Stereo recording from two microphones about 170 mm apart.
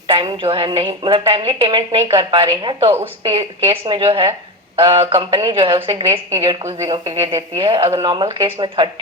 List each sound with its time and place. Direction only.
0.1 s a woman's voice: 30° right (ahead or behind)
2.9 s a woman's voice: 15° right (ahead or behind)
3.3 s a woman's voice: 30° right (ahead or behind)
7.6 s a woman's voice: 30° right (ahead or behind)